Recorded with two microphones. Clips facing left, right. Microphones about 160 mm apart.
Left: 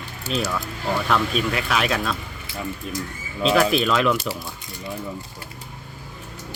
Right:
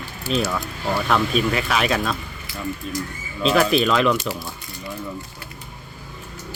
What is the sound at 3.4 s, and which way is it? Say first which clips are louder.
Speech: right 1 dB; centre (ahead or behind).